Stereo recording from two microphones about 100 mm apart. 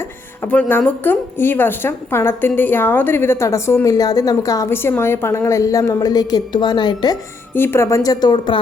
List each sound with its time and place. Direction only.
0.4 s a woman's voice: 15° left (ahead or behind)
3.8 s a woman's voice: 40° left (ahead or behind)
4.7 s a woman's voice: 25° left (ahead or behind); by 7.2 s 50° left (ahead or behind)
7.5 s a woman's voice: 25° left (ahead or behind); by 8.5 s 45° left (ahead or behind)